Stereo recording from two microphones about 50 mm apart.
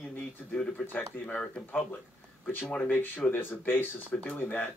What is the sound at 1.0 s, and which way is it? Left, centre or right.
Speech, left.